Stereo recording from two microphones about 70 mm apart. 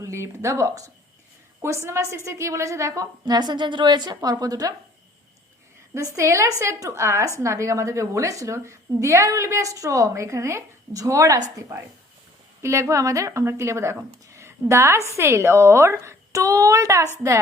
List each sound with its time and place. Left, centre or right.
0.0 s a woman's voice: right
5.9 s speech: right
11.7 s speech: right